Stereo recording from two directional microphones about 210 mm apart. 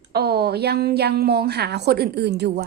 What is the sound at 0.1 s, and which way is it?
A woman's voice, 50° right (ahead or behind).